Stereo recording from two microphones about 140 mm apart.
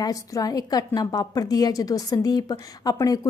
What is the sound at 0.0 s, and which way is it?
A woman's voice, 25° left (ahead or behind).